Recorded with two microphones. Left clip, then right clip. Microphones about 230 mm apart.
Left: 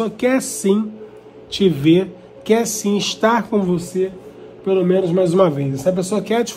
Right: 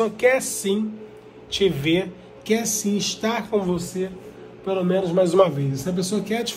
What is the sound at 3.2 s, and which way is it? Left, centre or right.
Speech, left.